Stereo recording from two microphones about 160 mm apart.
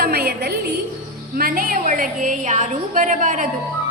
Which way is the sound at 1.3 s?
65° right (ahead or behind).